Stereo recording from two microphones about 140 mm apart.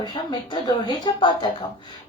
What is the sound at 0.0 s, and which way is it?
Speech, 30° left (ahead or behind).